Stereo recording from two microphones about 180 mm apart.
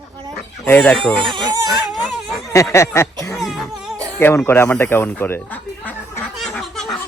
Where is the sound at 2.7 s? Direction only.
15° left (ahead or behind).